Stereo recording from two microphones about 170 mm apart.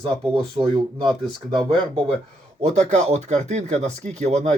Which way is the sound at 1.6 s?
30° right (ahead or behind).